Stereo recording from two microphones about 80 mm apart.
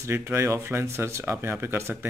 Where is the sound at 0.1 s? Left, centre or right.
Right.